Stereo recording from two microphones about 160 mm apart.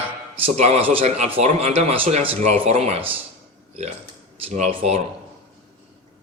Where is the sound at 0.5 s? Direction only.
40° right (ahead or behind).